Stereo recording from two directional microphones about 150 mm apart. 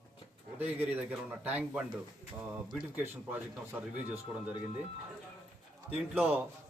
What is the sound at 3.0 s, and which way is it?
A man's voice, 15° right (ahead or behind).